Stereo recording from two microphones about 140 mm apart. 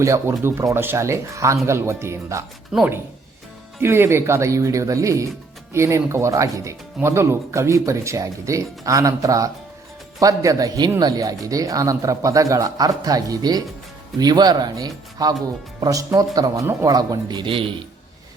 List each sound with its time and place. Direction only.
0.0 s speech: 20° right (ahead or behind)
3.8 s speech: 15° right (ahead or behind); by 17.7 s 40° right (ahead or behind)